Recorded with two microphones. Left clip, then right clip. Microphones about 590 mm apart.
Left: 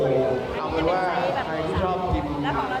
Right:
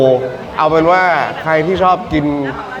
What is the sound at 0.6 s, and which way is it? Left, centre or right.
A man's voice, right.